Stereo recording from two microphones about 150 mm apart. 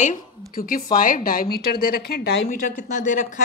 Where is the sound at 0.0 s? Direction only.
65° left (ahead or behind); by 2.3 s 90° left.